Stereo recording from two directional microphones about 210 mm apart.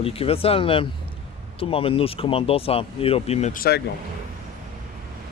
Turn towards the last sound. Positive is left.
turn(degrees=45)  # may be behind; listen again after turning